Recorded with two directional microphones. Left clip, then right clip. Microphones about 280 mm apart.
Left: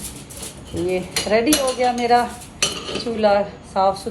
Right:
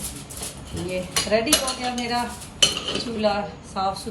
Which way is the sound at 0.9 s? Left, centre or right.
Centre.